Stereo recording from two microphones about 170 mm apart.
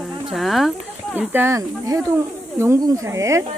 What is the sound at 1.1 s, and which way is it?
Speech, 10° right (ahead or behind).